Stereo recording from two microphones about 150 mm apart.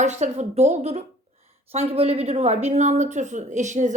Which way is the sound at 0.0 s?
50° right (ahead or behind).